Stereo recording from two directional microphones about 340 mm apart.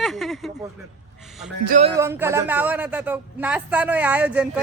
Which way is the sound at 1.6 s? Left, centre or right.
Right.